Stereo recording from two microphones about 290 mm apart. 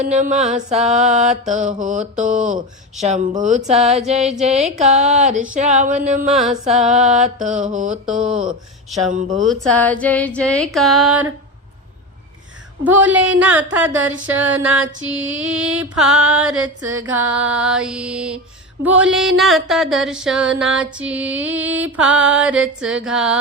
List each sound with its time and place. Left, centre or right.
0.0 s mantra: right
6.3 s music: centre
6.7 s mantra: right
9.4 s music: centre
12.8 s music: centre